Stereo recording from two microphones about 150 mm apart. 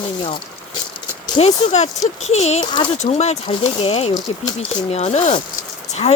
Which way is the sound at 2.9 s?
50° left (ahead or behind).